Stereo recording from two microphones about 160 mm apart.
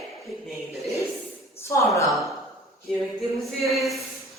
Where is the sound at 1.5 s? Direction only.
15° left (ahead or behind).